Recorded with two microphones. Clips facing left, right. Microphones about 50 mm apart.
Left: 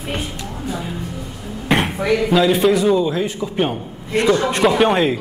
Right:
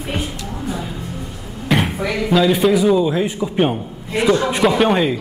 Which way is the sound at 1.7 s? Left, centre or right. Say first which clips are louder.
Even; centre.